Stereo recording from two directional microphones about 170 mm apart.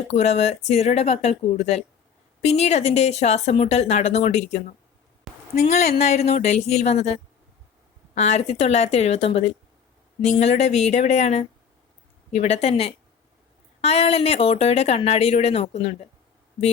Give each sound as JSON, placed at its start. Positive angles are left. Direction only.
{"t": 0.1, "sound": "speech", "side_deg": 40}
{"t": 5.3, "sound": "a sound", "side_deg": 0}
{"t": 5.6, "sound": "speech", "side_deg": 40}